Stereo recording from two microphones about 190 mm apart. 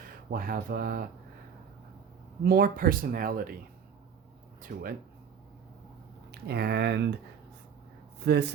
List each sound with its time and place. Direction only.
0.3 s speech: 50° right (ahead or behind)
2.4 s speech: 50° right (ahead or behind)
4.7 s speech: 50° right (ahead or behind)
6.5 s speech: 60° right (ahead or behind)
8.2 s speech: 60° right (ahead or behind)